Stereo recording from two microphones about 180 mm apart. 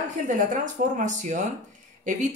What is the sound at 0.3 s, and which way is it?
Speech, 45° right (ahead or behind).